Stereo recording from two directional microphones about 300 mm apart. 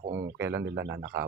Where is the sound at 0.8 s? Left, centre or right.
Right.